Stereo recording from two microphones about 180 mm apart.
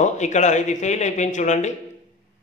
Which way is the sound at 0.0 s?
40° left (ahead or behind).